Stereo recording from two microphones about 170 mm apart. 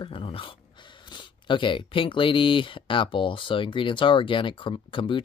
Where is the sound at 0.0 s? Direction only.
30° left (ahead or behind).